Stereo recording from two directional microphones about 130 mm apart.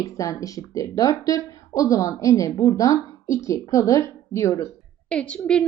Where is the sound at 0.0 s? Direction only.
25° left (ahead or behind).